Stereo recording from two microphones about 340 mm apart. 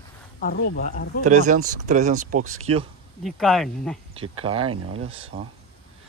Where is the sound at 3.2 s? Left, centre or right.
Centre.